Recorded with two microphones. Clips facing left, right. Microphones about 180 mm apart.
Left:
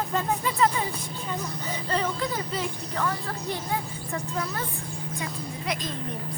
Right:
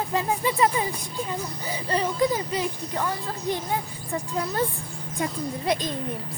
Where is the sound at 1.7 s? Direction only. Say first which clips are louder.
Right 2 dB; 10° right (ahead or behind).